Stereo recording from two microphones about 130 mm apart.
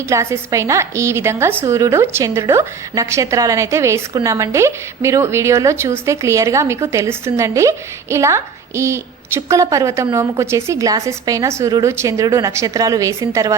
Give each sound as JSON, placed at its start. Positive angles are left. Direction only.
{"t": 0.1, "sound": "a woman's voice", "side_deg": -25}